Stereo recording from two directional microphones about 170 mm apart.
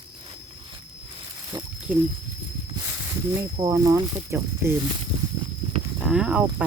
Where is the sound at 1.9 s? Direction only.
10° right (ahead or behind).